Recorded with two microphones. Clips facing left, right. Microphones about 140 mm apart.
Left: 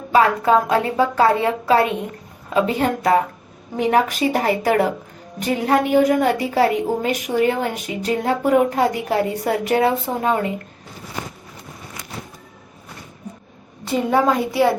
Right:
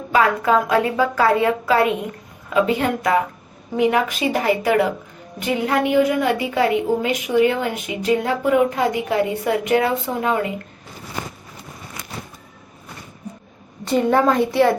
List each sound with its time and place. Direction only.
0.1 s a woman's voice: 30° left (ahead or behind)
13.8 s a woman's voice: 5° left (ahead or behind)